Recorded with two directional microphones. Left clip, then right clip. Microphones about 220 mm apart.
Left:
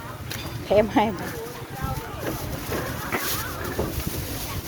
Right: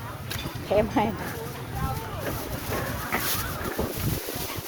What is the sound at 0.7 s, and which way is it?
Speech, 25° left (ahead or behind).